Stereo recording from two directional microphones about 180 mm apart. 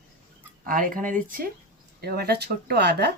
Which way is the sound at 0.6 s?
50° right (ahead or behind).